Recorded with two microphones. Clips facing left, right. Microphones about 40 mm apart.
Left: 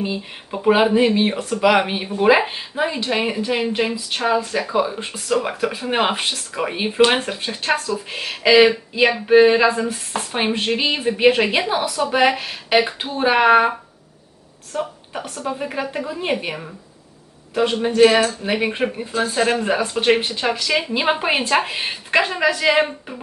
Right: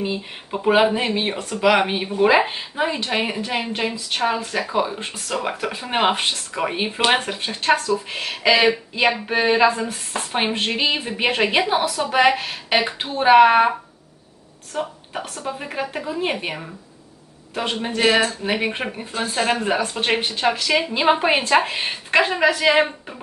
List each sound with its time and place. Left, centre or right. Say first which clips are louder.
0.0 s speech: even; centre
4.5 s a woman's voice: left 2 dB; centre
14.7 s a sound: left 1 dB; centre
15.6 s a woman's voice: left 1 dB; centre
18.0 s speech: left 3 dB; centre